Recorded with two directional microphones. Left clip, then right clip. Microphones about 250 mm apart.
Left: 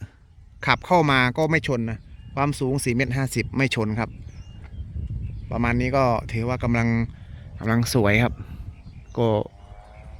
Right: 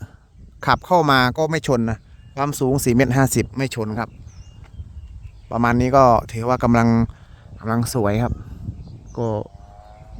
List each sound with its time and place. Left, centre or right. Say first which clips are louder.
0.6 s speech: right 3 dB; centre
5.5 s speech: right 6 dB; centre
7.6 s speech: right 1 dB; centre